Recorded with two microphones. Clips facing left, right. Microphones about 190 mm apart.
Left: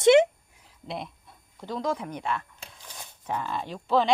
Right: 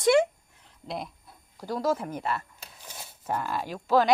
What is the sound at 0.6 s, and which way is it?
Speech, centre (ahead or behind).